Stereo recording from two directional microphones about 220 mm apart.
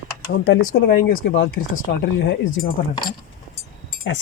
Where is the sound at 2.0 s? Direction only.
50° left (ahead or behind).